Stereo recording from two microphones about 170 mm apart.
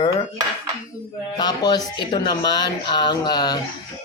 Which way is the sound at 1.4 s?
25° left (ahead or behind).